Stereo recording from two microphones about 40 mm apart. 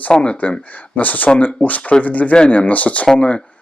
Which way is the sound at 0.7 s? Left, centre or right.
Left.